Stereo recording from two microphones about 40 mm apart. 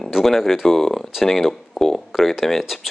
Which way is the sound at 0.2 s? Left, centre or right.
Centre.